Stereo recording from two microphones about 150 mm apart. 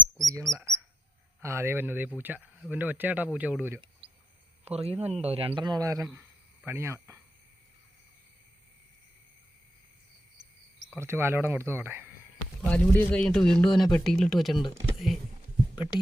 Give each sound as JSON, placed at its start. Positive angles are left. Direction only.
{"t": 0.3, "sound": "bird", "side_deg": -20}
{"t": 1.4, "sound": "speech", "side_deg": -20}
{"t": 4.6, "sound": "speech", "side_deg": -45}
{"t": 10.9, "sound": "speech", "side_deg": -15}
{"t": 12.6, "sound": "a man's voice", "side_deg": 10}
{"t": 14.9, "sound": "a sound", "side_deg": 0}